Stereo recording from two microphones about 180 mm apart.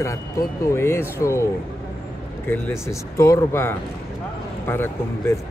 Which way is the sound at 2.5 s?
15° left (ahead or behind).